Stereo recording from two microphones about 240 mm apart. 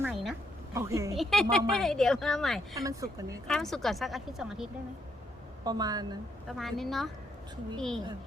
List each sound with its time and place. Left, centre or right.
0.0 s a sound: centre
0.7 s speech: centre
1.1 s speech: centre
2.7 s speech: centre
3.4 s speech: centre
5.6 s speech: centre
6.5 s speech: centre